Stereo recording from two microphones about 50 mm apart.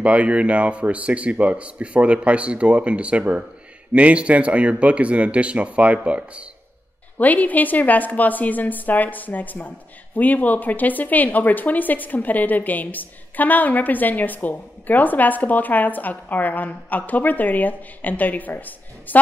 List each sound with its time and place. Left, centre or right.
0.0 s speech: right
7.2 s a woman's voice: left